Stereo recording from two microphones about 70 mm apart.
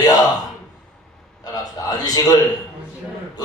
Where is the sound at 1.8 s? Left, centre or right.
Left.